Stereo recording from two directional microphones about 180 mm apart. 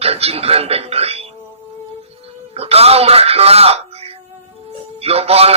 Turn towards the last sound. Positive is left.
turn(degrees=-35)  # may be behind; listen again after turning